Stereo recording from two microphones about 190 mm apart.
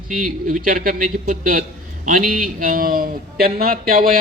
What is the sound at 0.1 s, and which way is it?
A man's voice, 45° right (ahead or behind).